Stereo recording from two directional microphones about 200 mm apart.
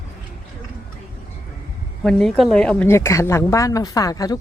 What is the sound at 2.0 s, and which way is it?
A woman's voice, 5° left (ahead or behind).